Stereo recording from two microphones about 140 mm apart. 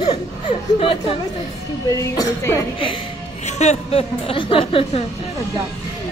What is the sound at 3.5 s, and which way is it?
A woman's voice, 55° left (ahead or behind).